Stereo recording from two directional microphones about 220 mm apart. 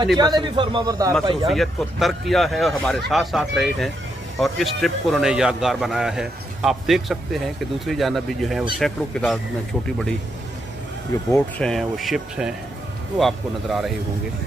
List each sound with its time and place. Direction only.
0.2 s a man's voice: 20° right (ahead or behind)
1.5 s a man's voice: centre (ahead or behind)
11.3 s a man's voice: 5° left (ahead or behind)